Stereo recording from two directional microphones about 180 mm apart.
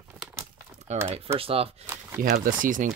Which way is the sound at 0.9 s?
40° right (ahead or behind).